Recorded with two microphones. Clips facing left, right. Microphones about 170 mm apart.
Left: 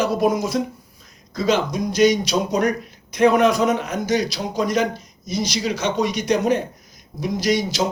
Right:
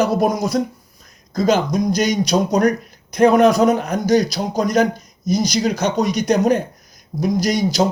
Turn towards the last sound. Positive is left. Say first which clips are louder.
# right 3 dB
turn(degrees=-40)  # may be behind; listen again after turning